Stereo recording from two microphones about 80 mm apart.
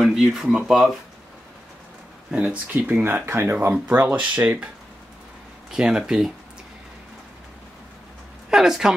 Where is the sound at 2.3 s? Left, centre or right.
Centre.